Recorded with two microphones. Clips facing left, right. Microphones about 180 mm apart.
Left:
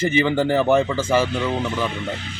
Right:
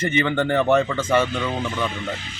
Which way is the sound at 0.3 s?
5° left (ahead or behind).